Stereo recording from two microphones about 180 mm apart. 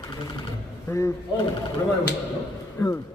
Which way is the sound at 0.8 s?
15° left (ahead or behind).